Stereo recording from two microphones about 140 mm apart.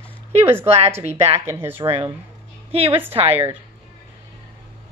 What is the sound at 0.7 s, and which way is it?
Speech, 45° right (ahead or behind).